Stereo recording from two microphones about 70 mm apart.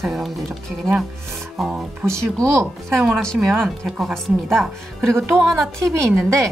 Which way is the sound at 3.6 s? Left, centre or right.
Centre.